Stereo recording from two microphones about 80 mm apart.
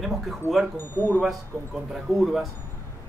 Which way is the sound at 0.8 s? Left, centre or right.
Left.